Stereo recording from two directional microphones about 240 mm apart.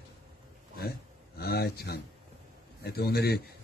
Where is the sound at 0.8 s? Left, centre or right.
Left.